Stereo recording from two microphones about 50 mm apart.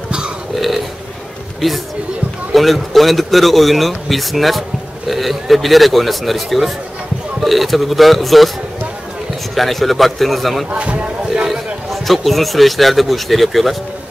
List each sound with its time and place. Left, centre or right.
0.6 s burping: centre
2.5 s a man's voice: centre
9.6 s a man's voice: centre
10.7 s speech: right
11.4 s a man's voice: centre